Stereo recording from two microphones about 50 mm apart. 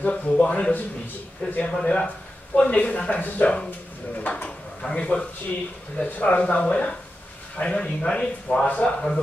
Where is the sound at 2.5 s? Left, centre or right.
Left.